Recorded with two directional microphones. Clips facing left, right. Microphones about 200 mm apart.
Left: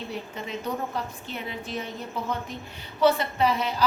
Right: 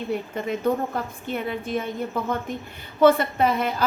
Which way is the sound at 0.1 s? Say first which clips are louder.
Right 7 dB; 50° right (ahead or behind).